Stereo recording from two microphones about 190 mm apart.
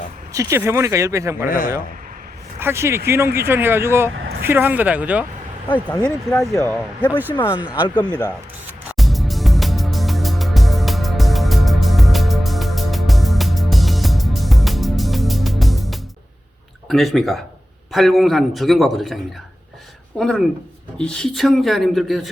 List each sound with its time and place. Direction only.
0.3 s speech: 15° right (ahead or behind)
1.5 s a man's voice: 45° left (ahead or behind)
2.6 s speech: 15° right (ahead or behind)
4.1 s vehicle: 75° right (ahead or behind)
4.4 s speech: 10° right (ahead or behind)
6.5 s speech: 10° left (ahead or behind)
8.9 s music: centre (ahead or behind)
16.9 s a man's voice: centre (ahead or behind)